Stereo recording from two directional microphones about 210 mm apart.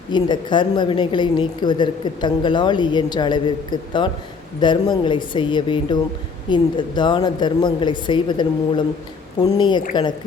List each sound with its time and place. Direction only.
0.1 s a woman's voice: 20° left (ahead or behind)